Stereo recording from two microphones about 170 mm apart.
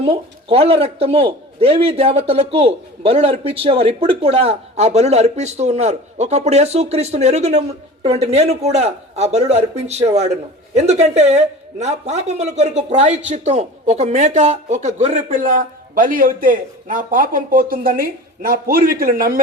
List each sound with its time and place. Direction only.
0.0 s a man's voice: 35° right (ahead or behind); by 19.4 s 55° right (ahead or behind)